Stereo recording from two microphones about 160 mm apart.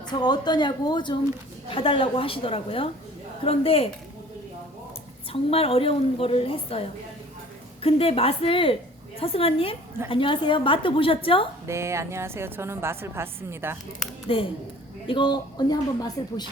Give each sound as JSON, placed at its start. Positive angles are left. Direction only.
{"t": 0.1, "sound": "a woman's voice", "side_deg": 25}
{"t": 5.3, "sound": "a woman's voice", "side_deg": 35}
{"t": 11.6, "sound": "a woman's voice", "side_deg": -15}
{"t": 14.3, "sound": "a woman's voice", "side_deg": 35}